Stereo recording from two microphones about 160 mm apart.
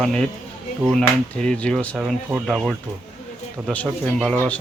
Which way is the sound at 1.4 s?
5° left (ahead or behind).